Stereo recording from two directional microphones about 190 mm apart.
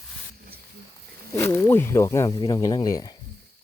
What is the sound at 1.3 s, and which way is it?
Speech, 10° left (ahead or behind).